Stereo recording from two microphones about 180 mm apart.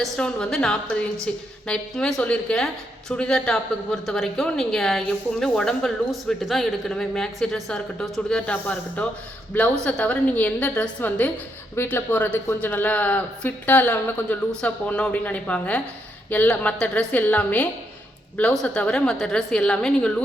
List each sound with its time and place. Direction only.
0.0 s a woman's voice: 5° left (ahead or behind)